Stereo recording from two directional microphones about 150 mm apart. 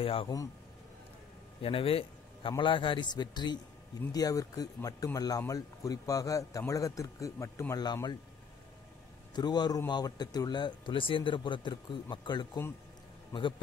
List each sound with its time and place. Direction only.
0.0 s a man's voice: 40° left (ahead or behind)
1.6 s a man's voice: 40° left (ahead or behind)
9.3 s a man's voice: 30° left (ahead or behind)